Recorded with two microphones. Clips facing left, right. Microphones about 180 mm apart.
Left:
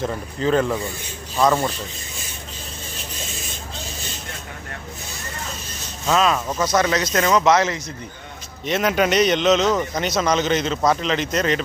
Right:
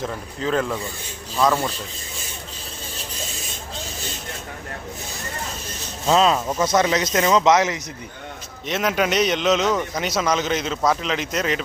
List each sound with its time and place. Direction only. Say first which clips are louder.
0.0 s speech: left 4 dB; centre (ahead or behind)
6.1 s speech: right 1 dB; 25° right (ahead or behind)
8.6 s speech: left 2 dB; centre (ahead or behind)